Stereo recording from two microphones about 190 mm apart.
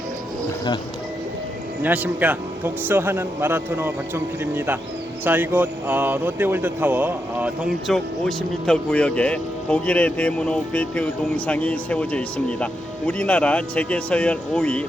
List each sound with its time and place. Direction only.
1.8 s speech: 10° right (ahead or behind)